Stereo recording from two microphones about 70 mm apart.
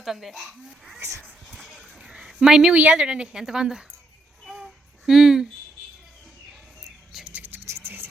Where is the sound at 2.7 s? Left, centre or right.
Centre.